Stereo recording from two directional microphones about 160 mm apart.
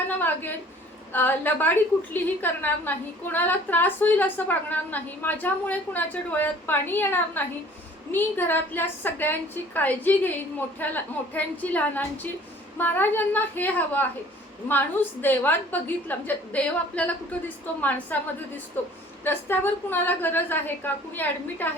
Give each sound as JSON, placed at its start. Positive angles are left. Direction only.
{"t": 0.2, "sound": "a woman's voice", "side_deg": 10}